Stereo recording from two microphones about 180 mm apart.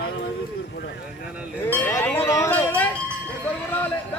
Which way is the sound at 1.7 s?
10° left (ahead or behind).